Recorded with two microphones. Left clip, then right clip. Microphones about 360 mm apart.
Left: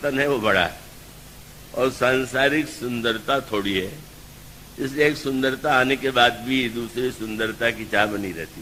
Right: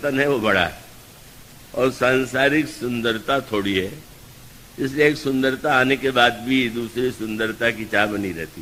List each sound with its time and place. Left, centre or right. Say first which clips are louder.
0.0 s a man's voice: right 1 dB; left